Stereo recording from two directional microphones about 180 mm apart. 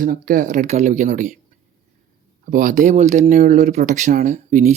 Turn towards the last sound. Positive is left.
turn(degrees=-45)  # may be behind; listen again after turning